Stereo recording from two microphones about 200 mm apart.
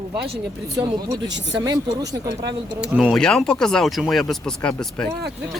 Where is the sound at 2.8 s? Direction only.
5° right (ahead or behind).